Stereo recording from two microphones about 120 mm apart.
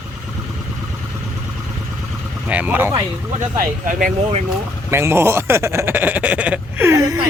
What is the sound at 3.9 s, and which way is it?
Speech, 90° right.